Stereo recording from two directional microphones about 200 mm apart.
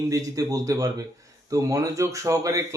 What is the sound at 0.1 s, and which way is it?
Speech, 15° right (ahead or behind).